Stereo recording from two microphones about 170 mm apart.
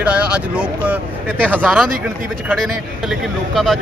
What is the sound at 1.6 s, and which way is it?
Speech, 5° right (ahead or behind).